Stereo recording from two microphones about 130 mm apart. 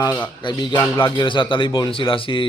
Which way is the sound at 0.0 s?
30° left (ahead or behind).